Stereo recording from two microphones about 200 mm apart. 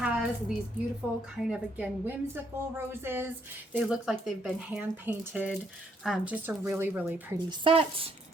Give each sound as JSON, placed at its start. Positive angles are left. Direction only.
{"t": 0.0, "sound": "a sound", "side_deg": -5}
{"t": 1.5, "sound": "a woman's voice", "side_deg": -5}
{"t": 7.6, "sound": "speech", "side_deg": -25}